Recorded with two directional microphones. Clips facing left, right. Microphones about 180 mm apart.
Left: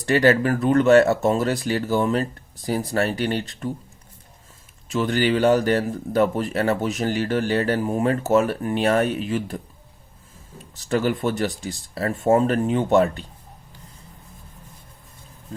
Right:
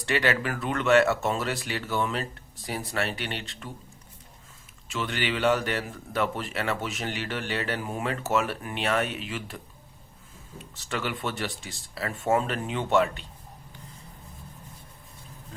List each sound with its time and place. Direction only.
0.0 s a man's voice: 40° left (ahead or behind)
4.9 s a man's voice: 40° left (ahead or behind)
10.8 s a man's voice: 40° left (ahead or behind)